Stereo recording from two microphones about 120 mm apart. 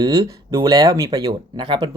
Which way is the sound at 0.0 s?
30° right (ahead or behind).